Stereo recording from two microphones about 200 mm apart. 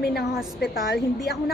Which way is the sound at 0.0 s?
50° left (ahead or behind).